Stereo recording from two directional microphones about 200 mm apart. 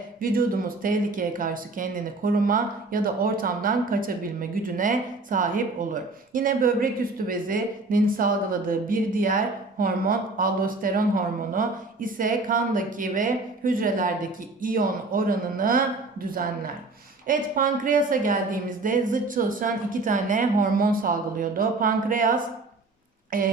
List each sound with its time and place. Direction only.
0.2 s speech: 45° right (ahead or behind)
17.2 s speech: 45° right (ahead or behind)